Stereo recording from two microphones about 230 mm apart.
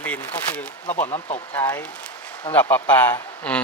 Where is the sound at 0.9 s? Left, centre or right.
Left.